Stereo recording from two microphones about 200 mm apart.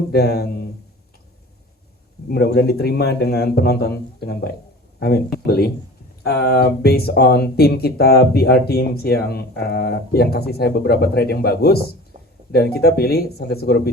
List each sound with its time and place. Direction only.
0.1 s speech: 50° left (ahead or behind)
2.3 s speech: 55° left (ahead or behind)
12.1 s a sound: 30° right (ahead or behind)
12.5 s speech: 55° left (ahead or behind)